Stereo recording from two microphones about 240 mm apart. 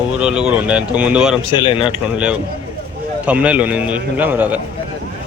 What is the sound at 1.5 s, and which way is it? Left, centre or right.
Speech, left.